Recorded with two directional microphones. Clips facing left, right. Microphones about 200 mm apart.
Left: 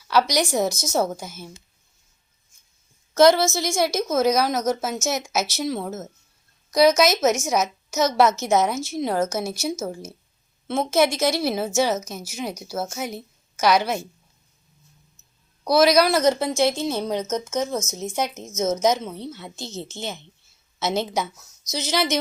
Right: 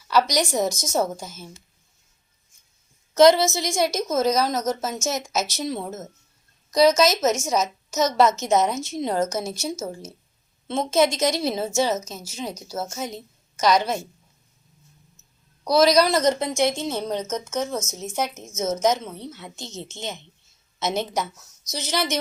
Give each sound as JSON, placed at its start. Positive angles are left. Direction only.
{"t": 0.1, "sound": "a woman's voice", "side_deg": 10}
{"t": 3.4, "sound": "a woman's voice", "side_deg": -20}
{"t": 3.8, "sound": "a woman's voice", "side_deg": 5}
{"t": 8.7, "sound": "a woman's voice", "side_deg": -15}
{"t": 9.0, "sound": "a woman's voice", "side_deg": 5}
{"t": 15.6, "sound": "a woman's voice", "side_deg": 10}